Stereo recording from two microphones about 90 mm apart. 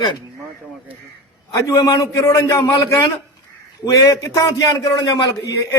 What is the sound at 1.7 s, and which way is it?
Speech, 50° left (ahead or behind).